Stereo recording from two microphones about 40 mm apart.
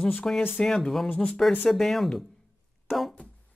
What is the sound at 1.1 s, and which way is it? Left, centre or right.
Speech, left.